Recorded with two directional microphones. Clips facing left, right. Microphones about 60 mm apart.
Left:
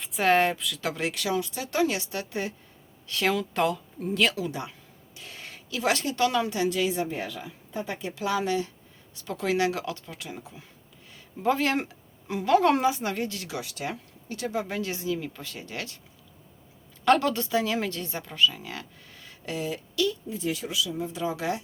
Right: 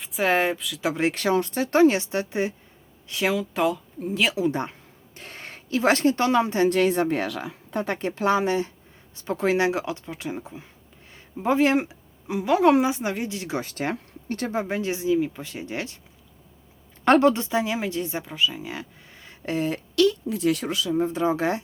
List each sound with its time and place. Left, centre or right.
0.0 s speech: centre
0.9 s speech: right
1.2 s speech: right
3.1 s speech: centre
5.1 s speech: right
6.7 s a woman's voice: right
13.6 s speech: right
14.5 s speech: right
17.1 s speech: right
19.5 s a woman's voice: right
20.0 s a woman's voice: right